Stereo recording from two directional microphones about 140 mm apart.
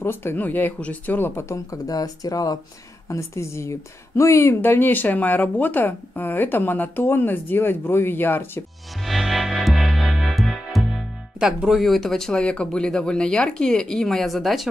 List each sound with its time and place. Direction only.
0.0 s speech: 15° left (ahead or behind)
9.0 s music: centre (ahead or behind)